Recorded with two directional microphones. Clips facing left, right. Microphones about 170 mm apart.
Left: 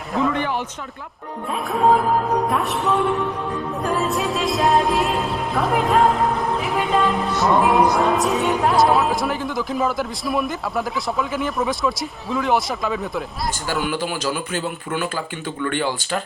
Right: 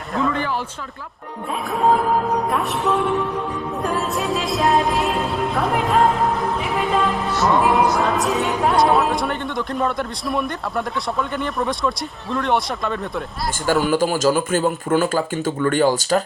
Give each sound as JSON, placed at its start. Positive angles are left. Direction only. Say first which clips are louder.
{"t": 0.1, "sound": "a sound", "louder": "left 1 dB", "side_deg": 0}
{"t": 1.7, "sound": "music", "louder": "left 1 dB", "side_deg": 0}
{"t": 13.7, "sound": "a man's voice", "louder": "right 8 dB", "side_deg": -45}